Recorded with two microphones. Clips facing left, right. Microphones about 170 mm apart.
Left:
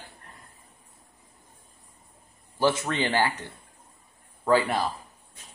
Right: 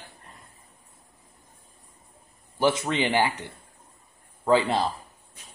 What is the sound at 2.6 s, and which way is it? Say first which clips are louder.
A man's voice: right 1 dB; 15° right (ahead or behind).